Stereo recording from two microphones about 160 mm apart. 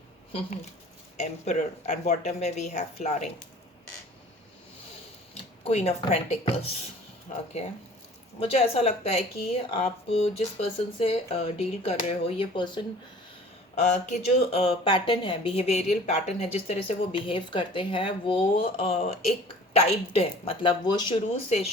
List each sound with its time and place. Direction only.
1.1 s speech: 45° left (ahead or behind)
5.3 s speech: 40° left (ahead or behind)
7.3 s speech: 50° left (ahead or behind)
8.4 s speech: 35° left (ahead or behind)
13.9 s speech: 45° left (ahead or behind); by 21.2 s 25° left (ahead or behind)